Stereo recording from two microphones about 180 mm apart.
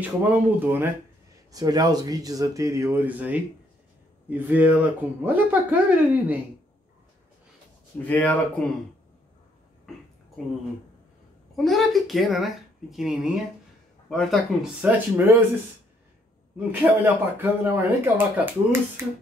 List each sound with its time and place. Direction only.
0.0 s speech: 10° right (ahead or behind)
1.5 s speech: 20° right (ahead or behind)
8.0 s speech: 10° left (ahead or behind)
11.5 s speech: centre (ahead or behind)
16.5 s speech: 10° right (ahead or behind)